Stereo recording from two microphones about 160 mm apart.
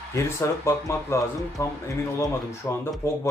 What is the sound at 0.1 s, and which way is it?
Speech, 20° left (ahead or behind).